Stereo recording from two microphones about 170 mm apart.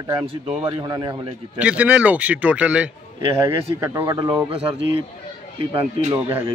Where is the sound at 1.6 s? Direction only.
5° right (ahead or behind).